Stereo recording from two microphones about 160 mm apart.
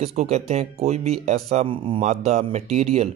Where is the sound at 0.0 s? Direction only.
45° right (ahead or behind).